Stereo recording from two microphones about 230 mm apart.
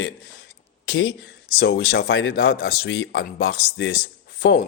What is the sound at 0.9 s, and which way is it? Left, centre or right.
Speech, left.